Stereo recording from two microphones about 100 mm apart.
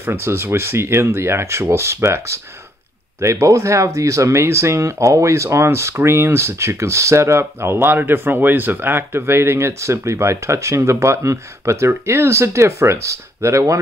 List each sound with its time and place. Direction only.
0.0 s speech: 20° right (ahead or behind)